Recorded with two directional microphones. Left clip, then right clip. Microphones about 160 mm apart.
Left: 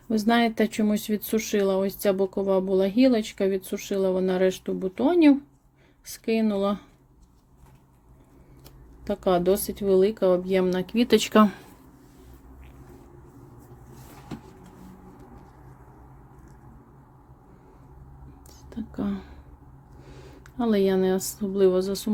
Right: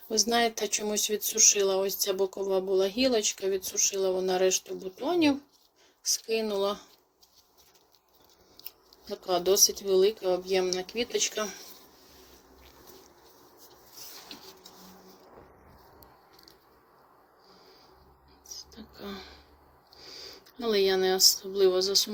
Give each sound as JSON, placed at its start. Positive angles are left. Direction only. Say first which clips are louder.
{"t": 0.1, "sound": "speech", "louder": "left 3 dB", "side_deg": 15}
{"t": 9.2, "sound": "speech", "louder": "left 1 dB", "side_deg": 15}
{"t": 10.9, "sound": "speech", "louder": "left 10 dB", "side_deg": 55}
{"t": 19.0, "sound": "a sound", "louder": "left 6 dB", "side_deg": 15}
{"t": 20.6, "sound": "speech", "louder": "left 2 dB", "side_deg": 15}